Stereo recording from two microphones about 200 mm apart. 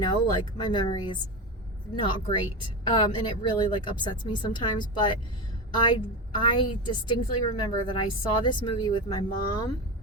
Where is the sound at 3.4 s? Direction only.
25° left (ahead or behind).